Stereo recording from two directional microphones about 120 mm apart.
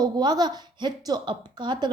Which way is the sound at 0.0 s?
35° right (ahead or behind).